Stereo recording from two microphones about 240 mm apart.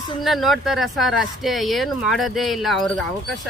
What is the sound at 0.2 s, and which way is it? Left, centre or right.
Speech, centre.